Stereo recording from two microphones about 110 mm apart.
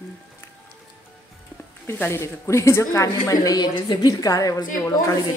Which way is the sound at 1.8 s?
20° left (ahead or behind).